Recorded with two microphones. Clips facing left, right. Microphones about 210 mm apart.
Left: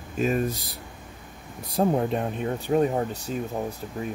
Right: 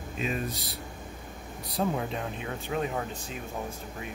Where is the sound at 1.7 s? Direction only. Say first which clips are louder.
Left 7 dB; 45° left (ahead or behind).